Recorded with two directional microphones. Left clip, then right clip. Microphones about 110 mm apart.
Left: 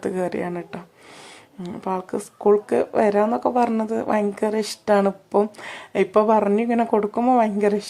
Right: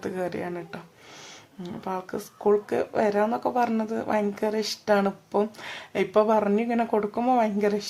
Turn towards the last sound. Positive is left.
turn(degrees=35)  # may be behind; listen again after turning